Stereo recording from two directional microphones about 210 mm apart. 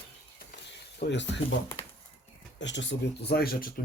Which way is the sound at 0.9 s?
55° left (ahead or behind).